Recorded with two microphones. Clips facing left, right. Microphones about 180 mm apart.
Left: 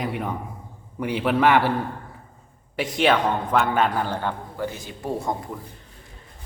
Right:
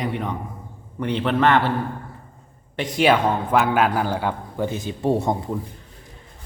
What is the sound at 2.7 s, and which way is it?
A man's voice, 5° left (ahead or behind).